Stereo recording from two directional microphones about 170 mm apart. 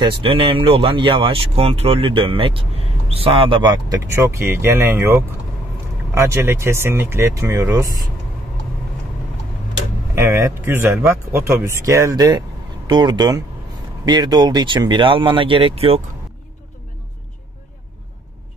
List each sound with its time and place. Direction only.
0.0 s speech: 30° right (ahead or behind)
4.1 s speech: 15° right (ahead or behind)
10.1 s speech: 15° right (ahead or behind); by 16.0 s 35° right (ahead or behind)